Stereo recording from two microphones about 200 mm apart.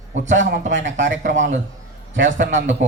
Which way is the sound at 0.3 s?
65° right (ahead or behind).